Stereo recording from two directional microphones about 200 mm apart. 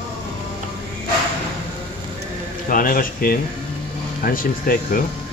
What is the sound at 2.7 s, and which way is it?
Speech, 45° left (ahead or behind).